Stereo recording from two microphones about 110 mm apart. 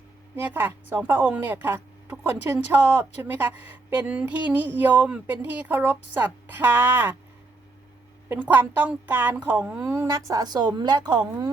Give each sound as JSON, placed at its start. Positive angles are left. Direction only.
{"t": 0.3, "sound": "speech", "side_deg": -20}
{"t": 8.3, "sound": "a woman's voice", "side_deg": -15}